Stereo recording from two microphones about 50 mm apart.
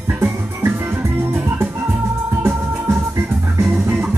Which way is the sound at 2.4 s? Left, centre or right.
Right.